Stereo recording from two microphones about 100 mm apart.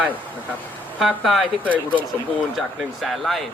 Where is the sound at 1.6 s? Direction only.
15° right (ahead or behind).